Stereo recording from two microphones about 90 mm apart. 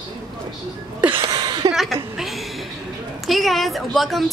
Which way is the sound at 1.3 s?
50° right (ahead or behind).